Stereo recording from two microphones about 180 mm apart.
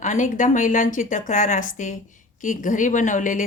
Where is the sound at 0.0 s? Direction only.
45° left (ahead or behind).